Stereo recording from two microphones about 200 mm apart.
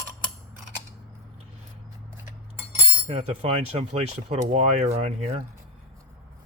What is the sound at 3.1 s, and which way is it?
Speech, 30° right (ahead or behind).